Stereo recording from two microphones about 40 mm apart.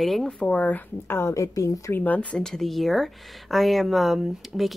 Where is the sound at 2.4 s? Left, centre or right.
Centre.